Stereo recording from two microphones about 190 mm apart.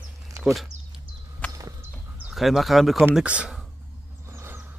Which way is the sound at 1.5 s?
15° right (ahead or behind).